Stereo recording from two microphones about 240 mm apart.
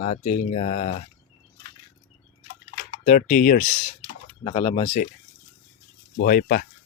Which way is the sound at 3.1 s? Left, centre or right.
Left.